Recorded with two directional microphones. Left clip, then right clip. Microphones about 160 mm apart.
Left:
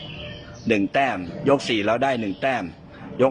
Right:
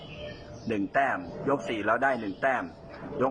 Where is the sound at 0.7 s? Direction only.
20° left (ahead or behind).